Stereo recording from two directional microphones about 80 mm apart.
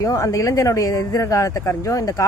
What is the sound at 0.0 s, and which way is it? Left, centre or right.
Speech, left.